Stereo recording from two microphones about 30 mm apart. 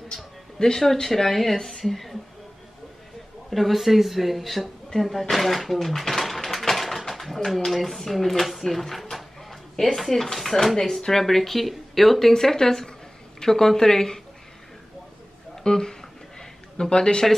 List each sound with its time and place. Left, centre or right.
0.1 s speech: left; by 2.1 s centre
3.4 s a woman's voice: centre
9.1 s a sound: centre
9.9 s speech: centre
15.5 s music: left
16.9 s speech: left